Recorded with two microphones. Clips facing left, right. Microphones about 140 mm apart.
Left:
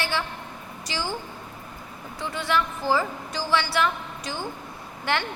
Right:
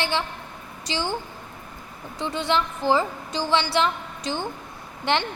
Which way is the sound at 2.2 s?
25° right (ahead or behind).